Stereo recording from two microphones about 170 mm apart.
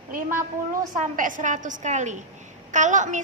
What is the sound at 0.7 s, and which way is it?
A woman's voice, 50° right (ahead or behind).